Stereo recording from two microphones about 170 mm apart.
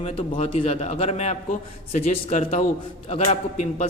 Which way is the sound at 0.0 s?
35° left (ahead or behind).